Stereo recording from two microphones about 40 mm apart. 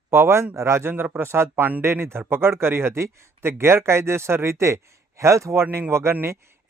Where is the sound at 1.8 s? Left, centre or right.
Right.